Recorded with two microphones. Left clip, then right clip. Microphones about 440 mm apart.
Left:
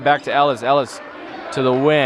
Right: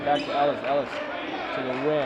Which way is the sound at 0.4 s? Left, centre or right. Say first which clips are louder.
Left 8 dB; left.